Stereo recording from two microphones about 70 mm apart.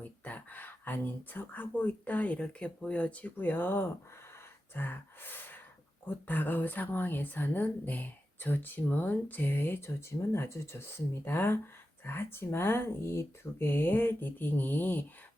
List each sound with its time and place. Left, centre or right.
0.0 s speech: left